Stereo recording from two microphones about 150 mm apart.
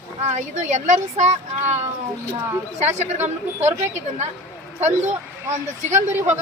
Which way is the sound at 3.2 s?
15° right (ahead or behind).